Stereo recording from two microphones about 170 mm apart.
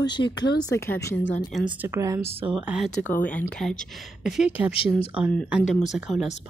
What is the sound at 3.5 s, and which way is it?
Speech, centre (ahead or behind).